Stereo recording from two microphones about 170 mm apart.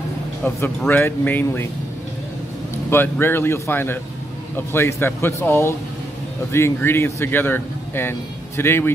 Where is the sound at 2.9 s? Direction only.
15° left (ahead or behind).